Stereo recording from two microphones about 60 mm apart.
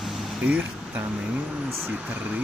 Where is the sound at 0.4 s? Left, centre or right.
Right.